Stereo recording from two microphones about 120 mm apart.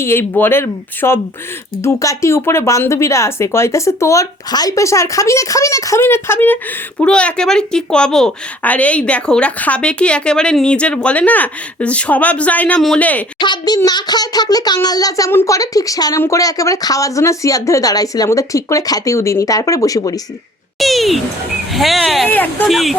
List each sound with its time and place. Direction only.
0.0 s a woman's voice: 20° left (ahead or behind)
13.4 s a child's voice: 35° left (ahead or behind)
20.7 s speech: centre (ahead or behind)
22.3 s a woman's voice: 15° left (ahead or behind)
22.7 s speech: centre (ahead or behind)